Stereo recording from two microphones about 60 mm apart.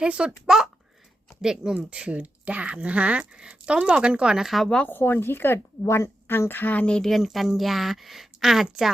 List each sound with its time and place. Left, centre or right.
0.0 s speech: centre
4.9 s speech: left
6.9 s speech: centre